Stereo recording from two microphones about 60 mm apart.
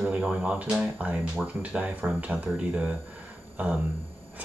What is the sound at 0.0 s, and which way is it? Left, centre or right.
Speech, centre.